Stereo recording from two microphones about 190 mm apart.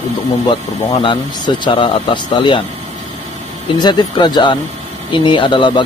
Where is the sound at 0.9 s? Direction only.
25° left (ahead or behind).